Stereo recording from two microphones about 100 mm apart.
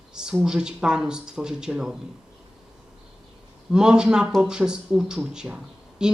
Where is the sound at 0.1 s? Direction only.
5° right (ahead or behind).